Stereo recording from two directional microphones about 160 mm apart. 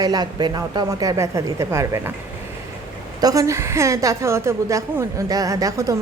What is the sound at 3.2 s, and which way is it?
A woman's voice, 20° right (ahead or behind).